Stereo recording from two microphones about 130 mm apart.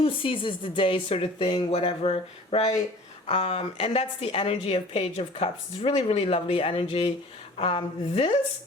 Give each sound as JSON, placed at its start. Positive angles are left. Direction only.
{"t": 0.0, "sound": "a woman's voice", "side_deg": 40}